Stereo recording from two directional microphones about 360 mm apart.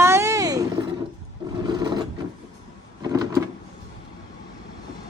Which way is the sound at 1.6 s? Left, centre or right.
Centre.